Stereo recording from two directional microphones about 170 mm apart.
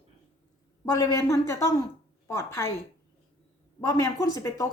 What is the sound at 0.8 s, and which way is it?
Speech, 20° left (ahead or behind).